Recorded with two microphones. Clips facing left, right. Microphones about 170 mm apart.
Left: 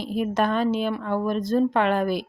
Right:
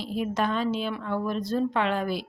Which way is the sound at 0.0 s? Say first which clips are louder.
Left 4 dB; 50° left (ahead or behind).